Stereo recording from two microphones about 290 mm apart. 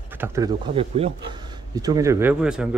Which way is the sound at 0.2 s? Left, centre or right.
Centre.